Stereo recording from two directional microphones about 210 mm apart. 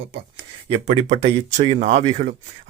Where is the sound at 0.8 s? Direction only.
30° right (ahead or behind).